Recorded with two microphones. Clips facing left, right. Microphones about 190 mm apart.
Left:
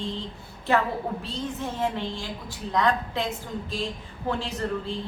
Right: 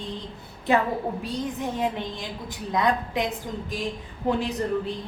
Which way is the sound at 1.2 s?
15° right (ahead or behind).